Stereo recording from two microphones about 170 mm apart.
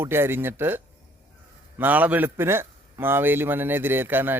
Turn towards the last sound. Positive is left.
turn(degrees=-10)  # may be behind; listen again after turning